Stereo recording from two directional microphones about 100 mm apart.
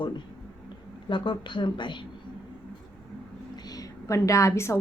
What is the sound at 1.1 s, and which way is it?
Speech, 55° left (ahead or behind).